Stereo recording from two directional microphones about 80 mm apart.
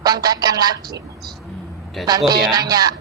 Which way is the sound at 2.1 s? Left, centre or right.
Right.